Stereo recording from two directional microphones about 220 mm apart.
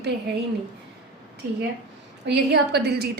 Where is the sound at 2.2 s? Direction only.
50° right (ahead or behind).